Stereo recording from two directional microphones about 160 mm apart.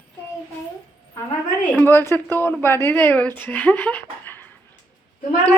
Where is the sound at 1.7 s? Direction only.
15° left (ahead or behind).